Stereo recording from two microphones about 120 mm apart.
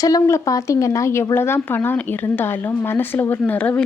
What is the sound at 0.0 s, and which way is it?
Speech, 25° left (ahead or behind).